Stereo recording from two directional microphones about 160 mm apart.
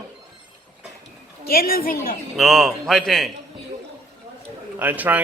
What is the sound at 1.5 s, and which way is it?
Speech, 65° left (ahead or behind).